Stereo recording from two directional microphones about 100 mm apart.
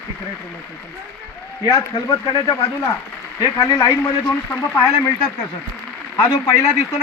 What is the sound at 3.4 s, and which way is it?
Speech, 35° left (ahead or behind).